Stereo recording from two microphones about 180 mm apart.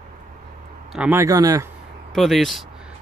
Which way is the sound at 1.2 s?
20° right (ahead or behind).